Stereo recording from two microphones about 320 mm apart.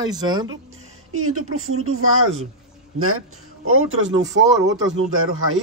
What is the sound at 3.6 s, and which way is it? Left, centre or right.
Speech, right.